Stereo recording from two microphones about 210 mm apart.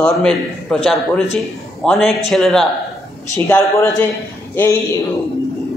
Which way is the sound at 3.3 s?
10° left (ahead or behind).